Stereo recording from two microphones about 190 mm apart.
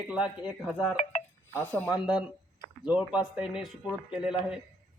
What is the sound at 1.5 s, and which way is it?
Speech, 10° left (ahead or behind).